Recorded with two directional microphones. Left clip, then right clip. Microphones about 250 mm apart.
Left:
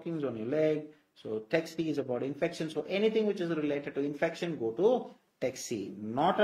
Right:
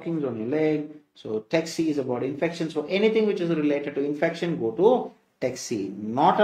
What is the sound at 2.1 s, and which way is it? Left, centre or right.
Speech, left.